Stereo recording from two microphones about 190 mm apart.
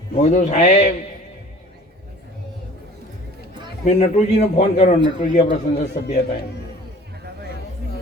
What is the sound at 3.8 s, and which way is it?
A man's voice, 35° left (ahead or behind).